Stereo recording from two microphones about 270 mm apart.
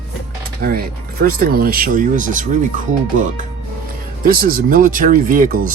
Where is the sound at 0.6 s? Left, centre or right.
Right.